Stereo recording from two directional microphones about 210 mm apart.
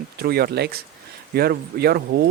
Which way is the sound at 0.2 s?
50° right (ahead or behind).